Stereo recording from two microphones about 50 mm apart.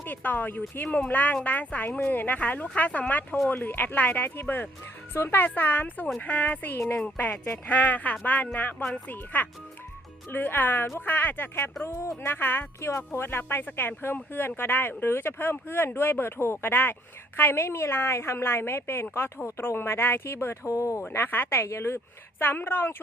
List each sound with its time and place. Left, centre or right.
0.0 s a woman's voice: left
20.7 s speech: left
21.1 s speech: left
21.7 s speech: left